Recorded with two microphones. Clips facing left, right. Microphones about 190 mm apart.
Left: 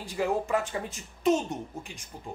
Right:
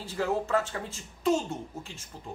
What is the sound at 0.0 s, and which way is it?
A man's voice, 15° left (ahead or behind).